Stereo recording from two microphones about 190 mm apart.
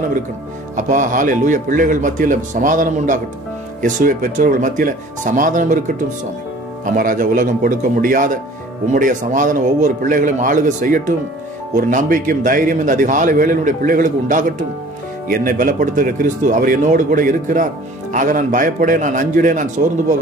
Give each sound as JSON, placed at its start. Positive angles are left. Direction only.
{"t": 0.7, "sound": "a man's voice", "side_deg": -40}
{"t": 6.8, "sound": "a man's voice", "side_deg": -45}